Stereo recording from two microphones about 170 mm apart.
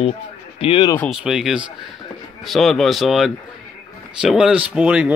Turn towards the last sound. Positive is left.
turn(degrees=-5)  # may be behind; listen again after turning